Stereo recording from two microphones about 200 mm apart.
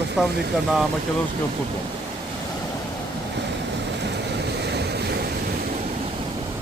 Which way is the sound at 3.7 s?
60° right (ahead or behind).